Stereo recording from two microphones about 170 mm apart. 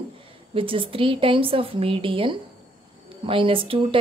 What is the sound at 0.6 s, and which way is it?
A woman's voice, 30° right (ahead or behind).